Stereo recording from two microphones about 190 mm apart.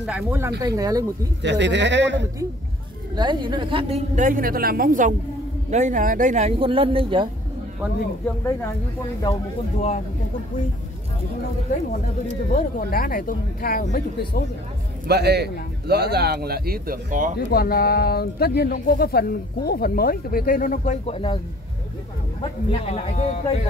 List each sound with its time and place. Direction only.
0.0 s speech: 10° right (ahead or behind)
1.4 s speech: 70° right (ahead or behind)
3.2 s a woman's voice: 25° right (ahead or behind)
9.2 s a man's voice: 35° left (ahead or behind)
12.5 s speech: 50° left (ahead or behind)
15.0 s a man's voice: 60° right (ahead or behind)
17.5 s speech: 55° left (ahead or behind); by 21.4 s 30° left (ahead or behind)
22.4 s a man's voice: 30° left (ahead or behind)